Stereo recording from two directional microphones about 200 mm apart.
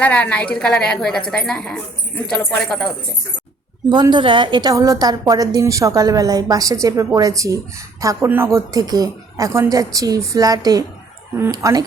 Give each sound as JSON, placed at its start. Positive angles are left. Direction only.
{"t": 0.0, "sound": "a woman's voice", "side_deg": 5}
{"t": 3.8, "sound": "a woman's voice", "side_deg": -20}